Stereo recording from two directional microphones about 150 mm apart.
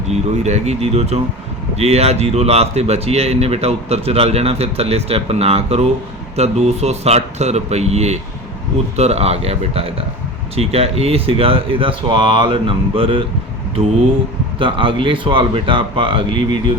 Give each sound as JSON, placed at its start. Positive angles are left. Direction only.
{"t": 0.1, "sound": "speech", "side_deg": -50}
{"t": 14.6, "sound": "speech", "side_deg": -35}